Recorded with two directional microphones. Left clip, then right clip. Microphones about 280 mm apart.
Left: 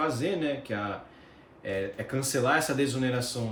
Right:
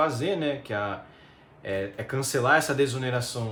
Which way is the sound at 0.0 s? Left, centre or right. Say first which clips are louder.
Right 3 dB; centre.